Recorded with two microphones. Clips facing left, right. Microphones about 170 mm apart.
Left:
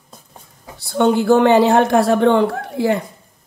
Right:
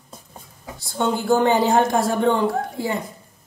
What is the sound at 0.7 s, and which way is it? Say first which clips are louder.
A woman's voice: left 8 dB; 65° left (ahead or behind).